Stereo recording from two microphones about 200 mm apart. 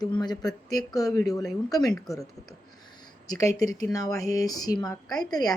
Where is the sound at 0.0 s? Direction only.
20° left (ahead or behind).